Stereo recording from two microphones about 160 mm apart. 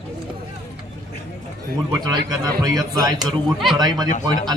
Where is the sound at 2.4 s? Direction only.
20° right (ahead or behind).